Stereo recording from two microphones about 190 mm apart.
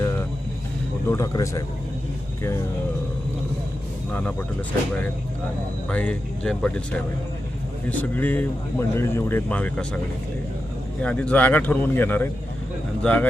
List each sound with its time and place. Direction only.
1.0 s speech: 15° left (ahead or behind)
4.1 s speech: 10° left (ahead or behind)
5.9 s a man's voice: 5° left (ahead or behind)
11.0 s speech: 5° left (ahead or behind)